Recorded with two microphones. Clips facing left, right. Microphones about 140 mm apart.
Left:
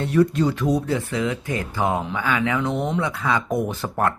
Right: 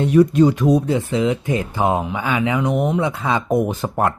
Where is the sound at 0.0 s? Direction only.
20° right (ahead or behind).